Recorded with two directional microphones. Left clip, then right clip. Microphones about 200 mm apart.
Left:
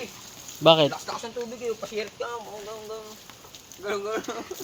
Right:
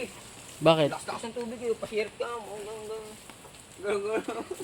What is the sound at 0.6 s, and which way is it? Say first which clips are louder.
Speech: left 5 dB; 20° left (ahead or behind).